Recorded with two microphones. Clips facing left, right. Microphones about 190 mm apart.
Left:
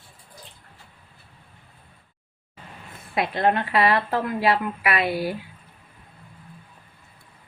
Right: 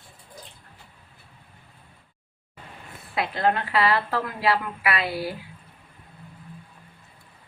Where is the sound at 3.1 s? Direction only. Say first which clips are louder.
Left 2 dB; 20° left (ahead or behind).